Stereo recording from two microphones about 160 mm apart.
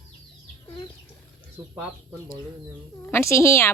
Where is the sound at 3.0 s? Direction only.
15° left (ahead or behind).